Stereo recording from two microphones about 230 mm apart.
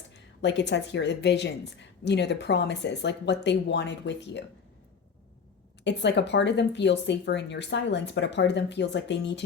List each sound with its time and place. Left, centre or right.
0.4 s a woman's voice: left
5.8 s a woman's voice: left